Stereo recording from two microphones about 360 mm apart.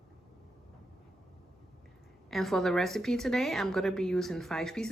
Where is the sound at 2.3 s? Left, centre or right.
Centre.